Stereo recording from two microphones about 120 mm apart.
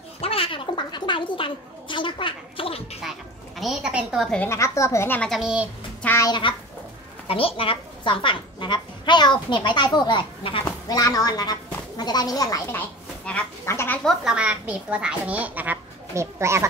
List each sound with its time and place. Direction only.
0.2 s a sound: 50° left (ahead or behind)
3.0 s a sound: centre (ahead or behind)
4.5 s a woman's voice: 25° left (ahead or behind)
5.2 s a child's voice: centre (ahead or behind)
6.2 s speech: 40° left (ahead or behind)
7.2 s a woman's voice: 50° left (ahead or behind)
10.9 s speech: 30° left (ahead or behind)
12.7 s a sound: 10° left (ahead or behind)
13.7 s speech: 20° left (ahead or behind)
14.0 s a child's voice: 5° right (ahead or behind); by 16.6 s 25° right (ahead or behind)